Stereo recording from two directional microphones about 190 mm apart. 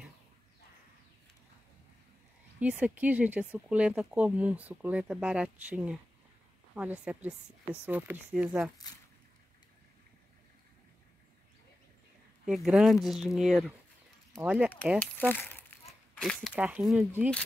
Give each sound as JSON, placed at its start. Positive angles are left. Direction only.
{"t": 2.6, "sound": "speech", "side_deg": -5}
{"t": 12.4, "sound": "speech", "side_deg": -5}
{"t": 15.0, "sound": "speech", "side_deg": 10}